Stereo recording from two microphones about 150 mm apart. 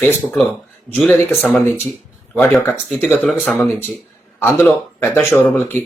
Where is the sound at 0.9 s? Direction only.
5° left (ahead or behind).